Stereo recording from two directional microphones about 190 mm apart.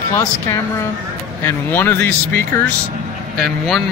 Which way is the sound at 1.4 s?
10° left (ahead or behind).